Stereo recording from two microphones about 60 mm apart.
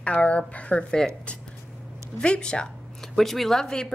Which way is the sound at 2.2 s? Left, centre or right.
Centre.